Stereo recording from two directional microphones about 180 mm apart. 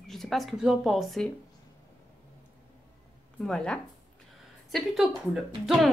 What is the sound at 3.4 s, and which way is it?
Speech, 5° left (ahead or behind).